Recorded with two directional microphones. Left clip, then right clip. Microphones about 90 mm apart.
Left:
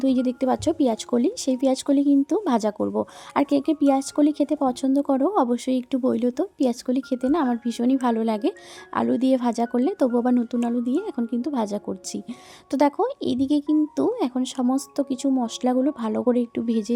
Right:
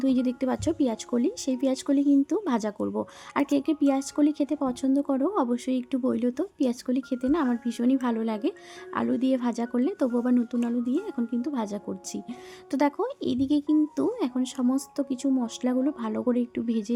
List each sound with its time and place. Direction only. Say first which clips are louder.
0.0 s speech: left 4 dB; 30° left (ahead or behind)
2.8 s speech: left 5 dB; 30° left (ahead or behind)